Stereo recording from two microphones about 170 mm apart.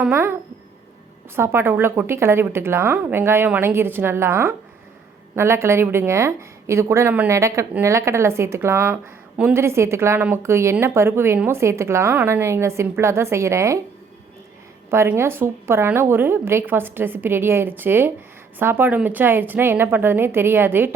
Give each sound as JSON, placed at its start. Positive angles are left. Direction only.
{"t": 0.0, "sound": "a woman's voice", "side_deg": -15}
{"t": 1.4, "sound": "a woman's voice", "side_deg": -15}
{"t": 14.8, "sound": "a woman's voice", "side_deg": -15}